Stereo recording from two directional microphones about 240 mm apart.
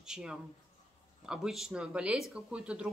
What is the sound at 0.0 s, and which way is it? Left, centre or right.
A man's voice, centre.